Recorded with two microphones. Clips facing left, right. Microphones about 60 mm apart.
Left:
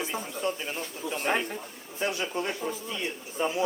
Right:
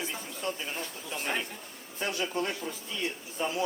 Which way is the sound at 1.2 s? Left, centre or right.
Left.